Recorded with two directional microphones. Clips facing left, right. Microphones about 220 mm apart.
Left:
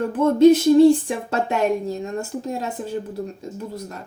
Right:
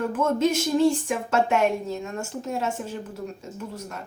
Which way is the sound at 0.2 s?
35° left (ahead or behind).